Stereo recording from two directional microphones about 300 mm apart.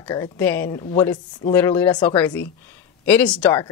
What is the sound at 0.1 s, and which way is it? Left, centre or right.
A woman's voice, centre.